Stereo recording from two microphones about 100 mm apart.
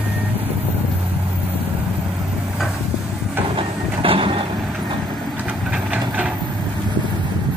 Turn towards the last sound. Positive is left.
turn(degrees=-10)  # may be behind; listen again after turning